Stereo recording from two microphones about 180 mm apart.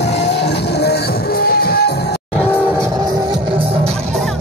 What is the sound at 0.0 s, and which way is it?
Music, 70° left (ahead or behind).